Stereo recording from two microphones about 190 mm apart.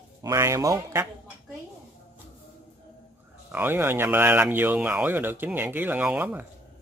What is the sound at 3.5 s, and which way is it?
Speech, 10° right (ahead or behind).